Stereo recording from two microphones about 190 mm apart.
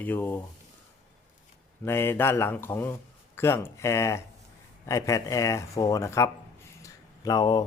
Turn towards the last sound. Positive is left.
turn(degrees=20)  # may be behind; listen again after turning